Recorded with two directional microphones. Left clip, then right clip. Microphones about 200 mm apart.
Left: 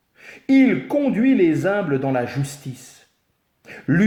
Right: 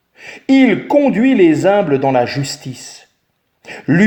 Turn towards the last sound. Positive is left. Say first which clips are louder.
# right 7 dB
turn(degrees=-40)  # may be behind; listen again after turning